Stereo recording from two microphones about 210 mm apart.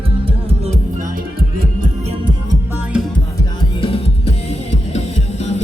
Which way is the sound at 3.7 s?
25° left (ahead or behind).